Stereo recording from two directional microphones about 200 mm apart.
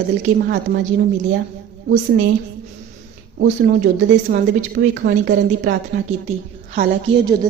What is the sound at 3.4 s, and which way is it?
A woman's voice, 45° right (ahead or behind).